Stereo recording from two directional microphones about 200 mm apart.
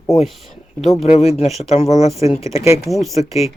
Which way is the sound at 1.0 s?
30° left (ahead or behind).